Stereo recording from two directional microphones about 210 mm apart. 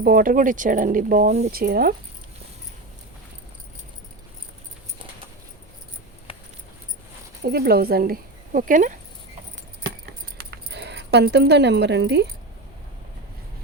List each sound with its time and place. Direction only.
0.0 s speech: 40° right (ahead or behind)
1.5 s speech: 45° right (ahead or behind)
6.3 s a sound: 25° left (ahead or behind)
7.4 s speech: 45° right (ahead or behind)
10.3 s keys jangling: 50° right (ahead or behind)